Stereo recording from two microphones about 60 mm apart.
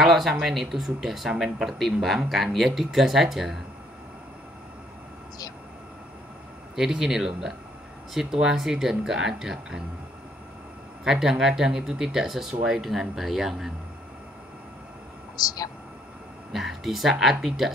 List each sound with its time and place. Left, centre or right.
0.0 s speech: centre
6.7 s speech: centre
11.1 s speech: centre
15.3 s speech: left
16.5 s speech: centre